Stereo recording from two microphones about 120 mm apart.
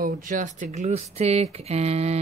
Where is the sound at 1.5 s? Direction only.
60° right (ahead or behind).